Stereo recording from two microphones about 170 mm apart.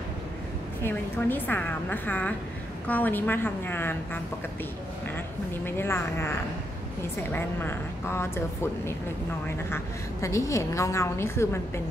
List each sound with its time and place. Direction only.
0.8 s speech: 10° left (ahead or behind)
5.7 s speech: 15° left (ahead or behind)
10.2 s speech: 15° left (ahead or behind)